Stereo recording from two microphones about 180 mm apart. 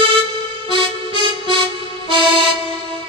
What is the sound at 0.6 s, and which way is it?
Music, 30° right (ahead or behind).